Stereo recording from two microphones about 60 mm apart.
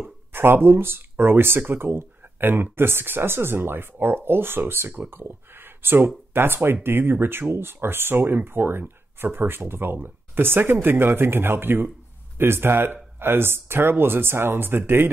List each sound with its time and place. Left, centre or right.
0.3 s speech: right